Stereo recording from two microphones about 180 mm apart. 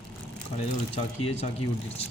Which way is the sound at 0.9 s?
35° left (ahead or behind).